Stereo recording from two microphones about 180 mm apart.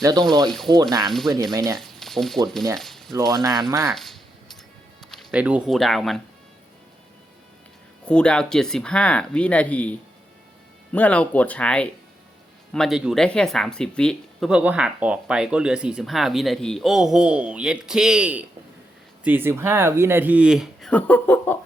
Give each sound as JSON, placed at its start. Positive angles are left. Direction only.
{"t": 0.0, "sound": "speech", "side_deg": -20}
{"t": 0.4, "sound": "speech", "side_deg": 0}
{"t": 2.7, "sound": "a sound", "side_deg": 0}
{"t": 3.3, "sound": "speech", "side_deg": -20}
{"t": 3.8, "sound": "a sound", "side_deg": 0}
{"t": 5.1, "sound": "speech", "side_deg": -5}
{"t": 8.0, "sound": "speech", "side_deg": 5}
{"t": 10.9, "sound": "speech", "side_deg": 10}
{"t": 20.9, "sound": "speech", "side_deg": 10}